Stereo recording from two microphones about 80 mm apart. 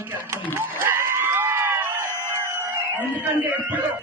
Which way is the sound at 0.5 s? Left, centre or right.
Right.